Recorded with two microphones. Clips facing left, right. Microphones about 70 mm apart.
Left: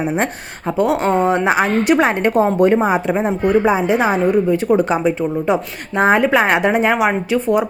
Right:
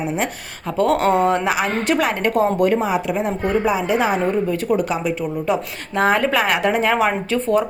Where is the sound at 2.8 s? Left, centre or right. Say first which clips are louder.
Left 4 dB; left.